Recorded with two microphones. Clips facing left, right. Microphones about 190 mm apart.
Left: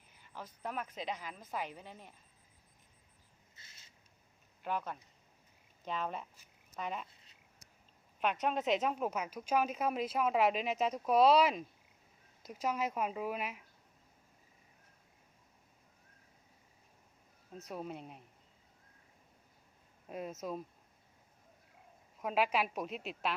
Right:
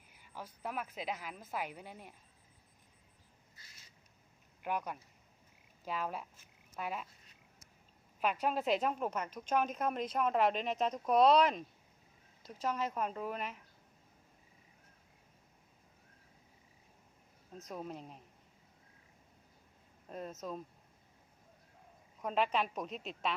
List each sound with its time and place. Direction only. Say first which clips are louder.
0.1 s a woman's voice: even; 10° right (ahead or behind)
3.5 s a sound: left 1 dB; 25° left (ahead or behind)
4.6 s a woman's voice: even; 15° right (ahead or behind)
8.2 s a woman's voice: even; 5° right (ahead or behind)
17.7 s a woman's voice: left 1 dB; 5° left (ahead or behind)
20.1 s speech: left 2 dB; 10° left (ahead or behind)
22.2 s a woman's voice: left 1 dB; 5° left (ahead or behind)